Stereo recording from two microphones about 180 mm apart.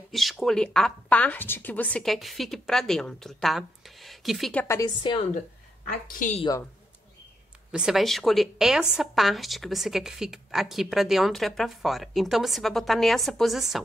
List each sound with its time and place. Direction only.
0.1 s a woman's voice: centre (ahead or behind)
4.6 s a woman's voice: 20° left (ahead or behind)
5.9 s a woman's voice: 50° left (ahead or behind)
7.7 s a woman's voice: centre (ahead or behind)